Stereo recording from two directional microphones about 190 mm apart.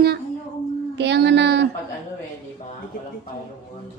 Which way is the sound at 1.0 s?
65° right (ahead or behind).